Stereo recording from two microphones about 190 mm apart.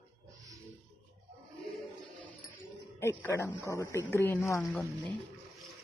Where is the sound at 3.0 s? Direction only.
15° left (ahead or behind).